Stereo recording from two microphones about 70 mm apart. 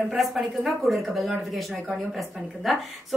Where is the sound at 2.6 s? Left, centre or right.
Centre.